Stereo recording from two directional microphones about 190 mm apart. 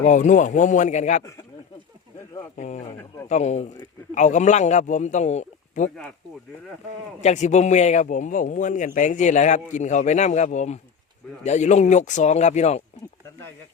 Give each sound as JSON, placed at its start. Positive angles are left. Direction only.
{"t": 0.0, "sound": "a man's voice", "side_deg": 40}
{"t": 2.6, "sound": "a man's voice", "side_deg": 40}
{"t": 7.2, "sound": "a man's voice", "side_deg": 40}